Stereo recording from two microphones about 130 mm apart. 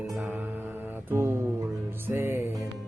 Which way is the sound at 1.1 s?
15° right (ahead or behind).